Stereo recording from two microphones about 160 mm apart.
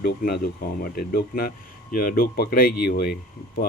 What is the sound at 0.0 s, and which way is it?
Speech, 75° left (ahead or behind).